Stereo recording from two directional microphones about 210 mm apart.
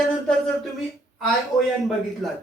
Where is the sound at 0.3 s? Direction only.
5° left (ahead or behind).